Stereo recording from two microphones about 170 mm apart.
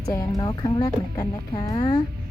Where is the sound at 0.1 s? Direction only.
20° left (ahead or behind).